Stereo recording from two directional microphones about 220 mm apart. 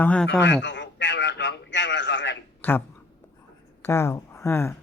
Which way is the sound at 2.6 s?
10° left (ahead or behind).